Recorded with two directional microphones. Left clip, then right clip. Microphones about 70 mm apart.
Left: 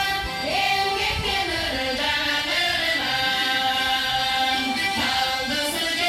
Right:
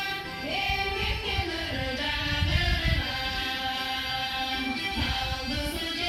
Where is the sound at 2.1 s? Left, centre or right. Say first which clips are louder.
Left 7 dB; left.